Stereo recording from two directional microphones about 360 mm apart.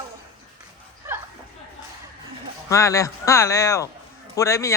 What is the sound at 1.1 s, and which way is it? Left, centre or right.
Chatter, centre.